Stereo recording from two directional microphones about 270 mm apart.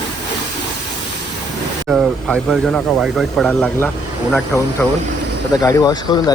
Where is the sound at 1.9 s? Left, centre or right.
Centre.